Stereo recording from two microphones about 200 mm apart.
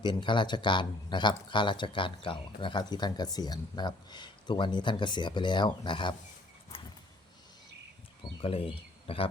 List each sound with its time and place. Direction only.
0.0 s speech: 25° left (ahead or behind)
6.7 s a sound: 25° left (ahead or behind)
8.2 s speech: 30° left (ahead or behind)